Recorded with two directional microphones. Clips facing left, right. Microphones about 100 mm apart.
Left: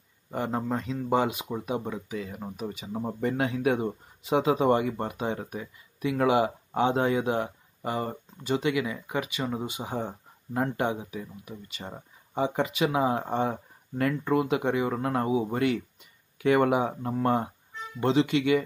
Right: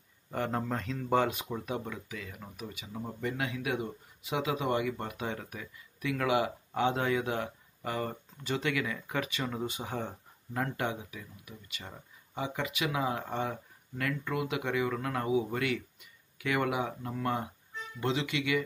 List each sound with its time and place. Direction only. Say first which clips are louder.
0.3 s speech: left 4 dB; 15° left (ahead or behind); by 18.6 s 35° left (ahead or behind)